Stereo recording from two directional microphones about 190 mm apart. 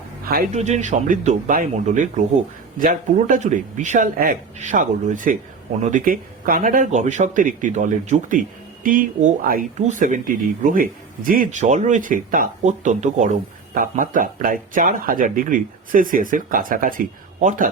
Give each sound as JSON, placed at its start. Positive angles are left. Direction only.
{"t": 0.5, "sound": "speech", "side_deg": -35}